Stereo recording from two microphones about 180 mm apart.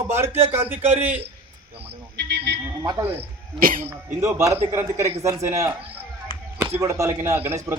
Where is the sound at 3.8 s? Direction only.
15° right (ahead or behind).